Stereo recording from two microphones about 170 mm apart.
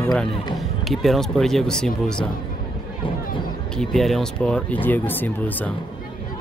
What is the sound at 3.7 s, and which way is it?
Speech, centre (ahead or behind).